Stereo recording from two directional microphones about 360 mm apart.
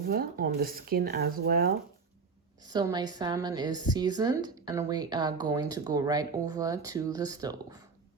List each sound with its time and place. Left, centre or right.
0.1 s speech: right
2.6 s a woman's voice: centre